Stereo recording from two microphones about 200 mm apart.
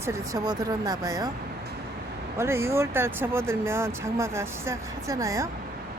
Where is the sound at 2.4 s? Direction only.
15° right (ahead or behind).